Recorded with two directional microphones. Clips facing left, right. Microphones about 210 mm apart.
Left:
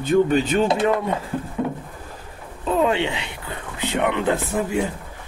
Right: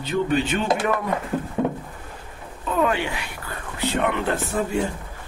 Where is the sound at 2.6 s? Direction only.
25° left (ahead or behind).